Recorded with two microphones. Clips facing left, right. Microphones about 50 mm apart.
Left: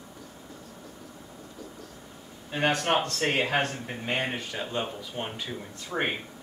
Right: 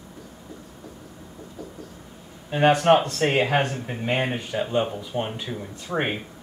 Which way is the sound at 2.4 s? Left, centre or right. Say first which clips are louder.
Right 8 dB; centre.